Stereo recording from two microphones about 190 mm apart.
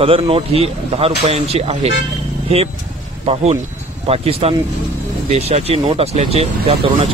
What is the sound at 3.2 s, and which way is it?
Speech, 35° right (ahead or behind).